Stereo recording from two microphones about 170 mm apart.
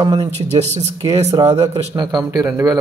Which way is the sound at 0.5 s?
40° right (ahead or behind).